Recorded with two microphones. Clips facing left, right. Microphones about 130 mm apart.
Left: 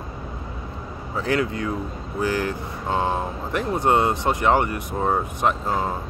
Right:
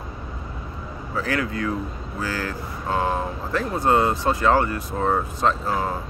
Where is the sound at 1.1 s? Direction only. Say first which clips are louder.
Left 2 dB; 25° left (ahead or behind).